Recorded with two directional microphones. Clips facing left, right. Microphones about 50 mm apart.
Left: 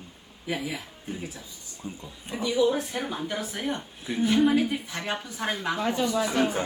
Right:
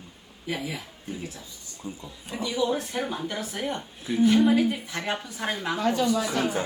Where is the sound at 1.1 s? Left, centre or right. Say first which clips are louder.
Even; left.